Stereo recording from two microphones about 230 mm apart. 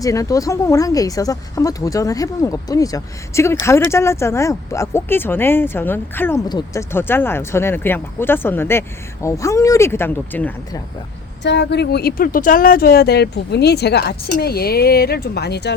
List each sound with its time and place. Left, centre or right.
0.0 s speech: centre
11.4 s speech: left